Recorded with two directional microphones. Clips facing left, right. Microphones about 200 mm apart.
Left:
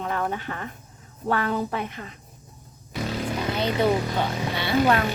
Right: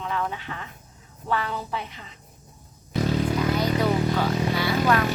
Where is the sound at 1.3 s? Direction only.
50° left (ahead or behind).